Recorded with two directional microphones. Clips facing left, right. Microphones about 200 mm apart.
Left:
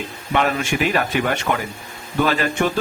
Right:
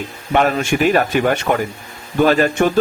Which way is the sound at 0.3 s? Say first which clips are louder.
Right 4 dB; 45° right (ahead or behind).